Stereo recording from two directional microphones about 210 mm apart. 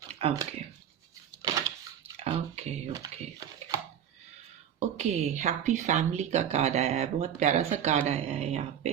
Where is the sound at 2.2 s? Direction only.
30° right (ahead or behind).